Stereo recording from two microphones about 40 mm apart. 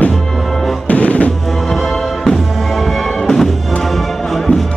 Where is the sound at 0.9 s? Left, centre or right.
Left.